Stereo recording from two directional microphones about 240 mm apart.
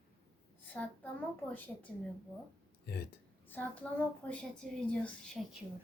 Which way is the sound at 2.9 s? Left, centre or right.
Left.